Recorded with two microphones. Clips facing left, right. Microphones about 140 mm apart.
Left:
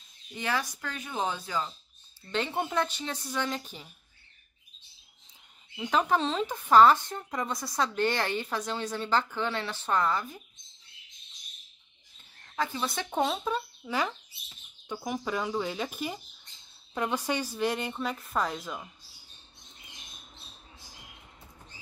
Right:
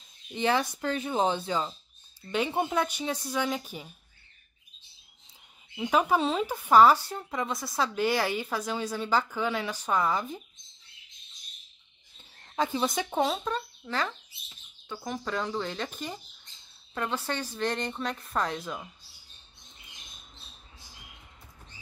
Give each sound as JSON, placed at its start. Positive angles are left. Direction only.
{"t": 0.3, "sound": "speech", "side_deg": -25}
{"t": 2.3, "sound": "speech", "side_deg": -10}
{"t": 5.8, "sound": "speech", "side_deg": -10}
{"t": 12.5, "sound": "speech", "side_deg": -20}
{"t": 13.1, "sound": "speech", "side_deg": 0}